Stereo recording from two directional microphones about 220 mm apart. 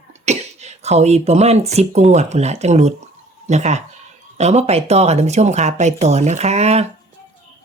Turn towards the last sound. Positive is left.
turn(degrees=-30)  # may be behind; listen again after turning